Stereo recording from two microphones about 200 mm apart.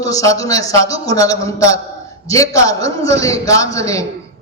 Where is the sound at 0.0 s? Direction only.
15° left (ahead or behind).